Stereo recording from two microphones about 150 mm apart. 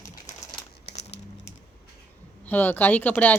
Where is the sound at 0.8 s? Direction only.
90° left.